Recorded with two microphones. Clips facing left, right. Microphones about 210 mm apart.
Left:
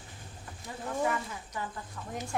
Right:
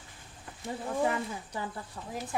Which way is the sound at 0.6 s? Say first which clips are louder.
Right 2 dB; 30° right (ahead or behind).